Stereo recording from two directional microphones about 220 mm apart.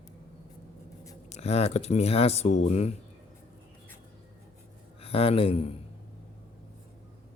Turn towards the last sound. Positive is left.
turn(degrees=25)  # may be behind; listen again after turning